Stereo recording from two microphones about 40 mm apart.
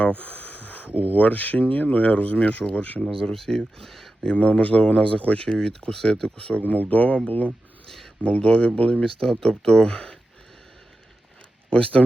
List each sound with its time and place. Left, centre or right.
0.2 s a sound: left
1.1 s speech: left
3.0 s speech: centre
4.2 s speech: left
6.7 s speech: left
7.9 s a sound: centre
8.2 s speech: left
9.0 s speech: centre
11.7 s speech: left